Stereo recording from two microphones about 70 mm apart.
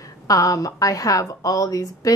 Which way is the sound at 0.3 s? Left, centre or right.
Left.